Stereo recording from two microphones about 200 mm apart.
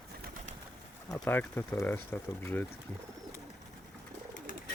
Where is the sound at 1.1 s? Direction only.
10° left (ahead or behind).